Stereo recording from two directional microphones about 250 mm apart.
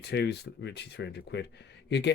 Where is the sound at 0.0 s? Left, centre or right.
Left.